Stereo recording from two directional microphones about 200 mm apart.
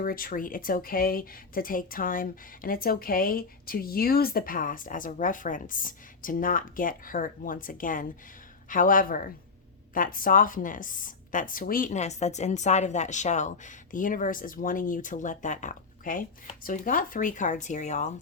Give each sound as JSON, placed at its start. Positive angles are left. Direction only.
{"t": 0.0, "sound": "a woman's voice", "side_deg": 45}